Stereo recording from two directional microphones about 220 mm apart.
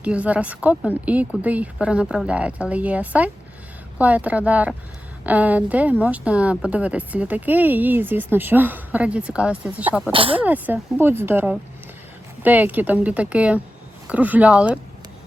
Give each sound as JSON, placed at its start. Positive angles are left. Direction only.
{"t": 0.0, "sound": "a woman's voice", "side_deg": -5}
{"t": 10.1, "sound": "speech", "side_deg": -25}
{"t": 10.4, "sound": "a woman's voice", "side_deg": -5}